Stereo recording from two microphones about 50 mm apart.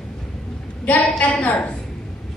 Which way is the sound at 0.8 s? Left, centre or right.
Left.